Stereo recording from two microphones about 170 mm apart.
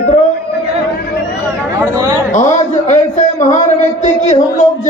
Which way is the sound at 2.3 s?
45° left (ahead or behind).